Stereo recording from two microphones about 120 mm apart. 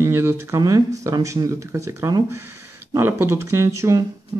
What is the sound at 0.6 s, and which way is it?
Speech, 30° right (ahead or behind).